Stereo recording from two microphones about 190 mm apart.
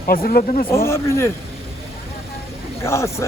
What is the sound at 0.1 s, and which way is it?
Speech, 50° left (ahead or behind).